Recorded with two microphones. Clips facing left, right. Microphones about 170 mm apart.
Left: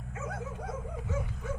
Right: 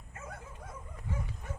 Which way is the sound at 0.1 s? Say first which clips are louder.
Left 8 dB; 80° left.